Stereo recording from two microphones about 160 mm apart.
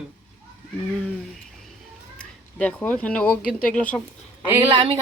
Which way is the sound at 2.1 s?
10° left (ahead or behind).